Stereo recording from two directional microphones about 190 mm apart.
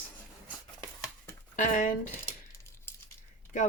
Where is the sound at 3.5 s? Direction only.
40° left (ahead or behind).